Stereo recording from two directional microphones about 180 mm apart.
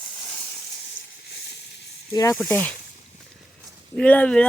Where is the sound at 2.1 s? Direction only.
20° left (ahead or behind).